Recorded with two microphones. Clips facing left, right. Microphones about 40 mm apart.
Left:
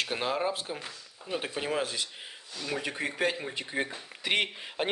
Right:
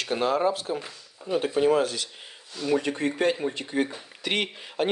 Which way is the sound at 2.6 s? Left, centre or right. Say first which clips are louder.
Right 8 dB; centre.